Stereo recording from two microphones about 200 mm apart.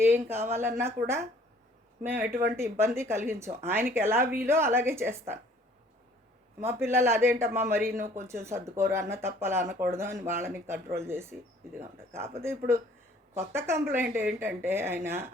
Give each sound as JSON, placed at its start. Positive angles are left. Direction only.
{"t": 0.0, "sound": "speech", "side_deg": -10}
{"t": 2.3, "sound": "speech", "side_deg": -45}
{"t": 2.6, "sound": "speech", "side_deg": -15}
{"t": 6.6, "sound": "speech", "side_deg": -10}
{"t": 12.4, "sound": "speech", "side_deg": -10}